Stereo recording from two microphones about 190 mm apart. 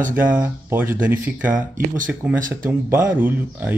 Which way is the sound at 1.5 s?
45° right (ahead or behind).